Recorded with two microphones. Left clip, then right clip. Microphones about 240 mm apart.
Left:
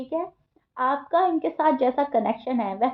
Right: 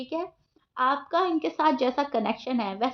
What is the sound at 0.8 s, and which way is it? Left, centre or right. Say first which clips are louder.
A woman's voice: left 3 dB; right.